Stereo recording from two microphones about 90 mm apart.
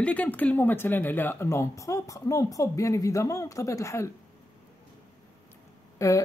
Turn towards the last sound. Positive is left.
turn(degrees=35)  # may be behind; listen again after turning